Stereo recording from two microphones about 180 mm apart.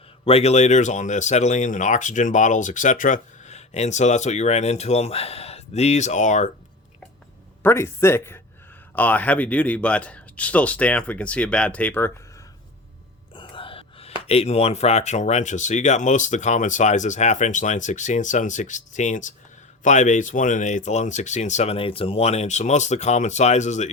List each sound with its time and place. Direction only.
0.3 s speech: 35° left (ahead or behind)
7.6 s speech: 15° left (ahead or behind)
13.3 s speech: 30° left (ahead or behind)